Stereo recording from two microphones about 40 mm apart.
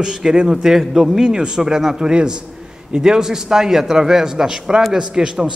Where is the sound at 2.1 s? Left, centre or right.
Right.